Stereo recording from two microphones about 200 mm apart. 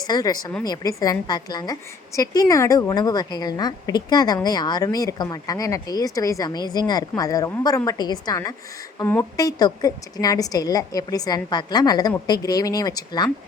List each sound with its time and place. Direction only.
0.1 s a woman's voice: 20° left (ahead or behind)